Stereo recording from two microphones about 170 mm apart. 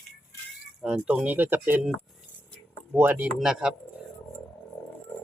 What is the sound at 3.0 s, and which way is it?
Speech, 10° right (ahead or behind).